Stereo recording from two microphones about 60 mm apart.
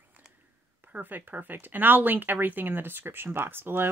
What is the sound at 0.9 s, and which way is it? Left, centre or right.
Speech, right.